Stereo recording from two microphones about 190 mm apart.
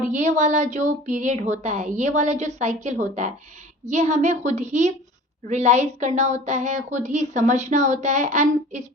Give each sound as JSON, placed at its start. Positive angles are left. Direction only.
{"t": 0.1, "sound": "a woman's voice", "side_deg": -40}